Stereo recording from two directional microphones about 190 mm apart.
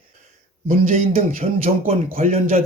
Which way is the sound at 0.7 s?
40° right (ahead or behind).